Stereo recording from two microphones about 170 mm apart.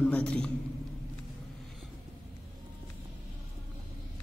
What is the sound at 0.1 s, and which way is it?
Speech, 5° left (ahead or behind).